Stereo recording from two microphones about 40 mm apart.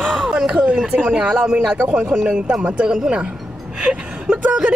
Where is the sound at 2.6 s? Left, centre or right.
Right.